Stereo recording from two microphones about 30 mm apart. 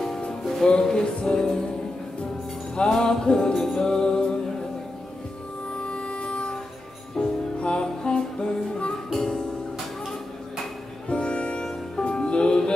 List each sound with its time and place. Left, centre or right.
0.7 s music: left
2.7 s music: left
3.5 s music: centre
3.8 s music: left
5.8 s music: left
7.2 s music: centre
7.5 s music: left
8.4 s music: left
11.1 s music: left